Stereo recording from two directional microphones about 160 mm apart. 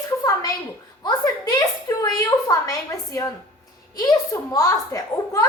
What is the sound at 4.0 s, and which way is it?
A woman's voice, 20° left (ahead or behind).